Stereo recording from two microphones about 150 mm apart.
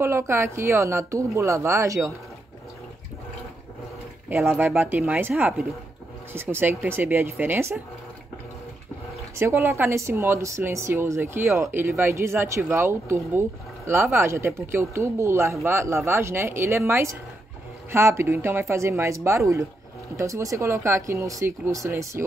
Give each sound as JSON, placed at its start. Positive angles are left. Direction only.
{"t": 0.0, "sound": "speech", "side_deg": -15}
{"t": 4.3, "sound": "speech", "side_deg": -15}
{"t": 9.4, "sound": "speech", "side_deg": -15}